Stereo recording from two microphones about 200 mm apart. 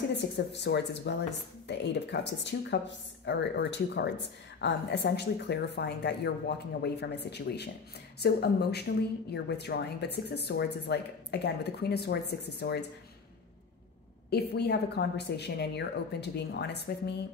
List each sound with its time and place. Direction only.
0.1 s a woman's voice: 60° left (ahead or behind)
14.3 s a woman's voice: 55° left (ahead or behind)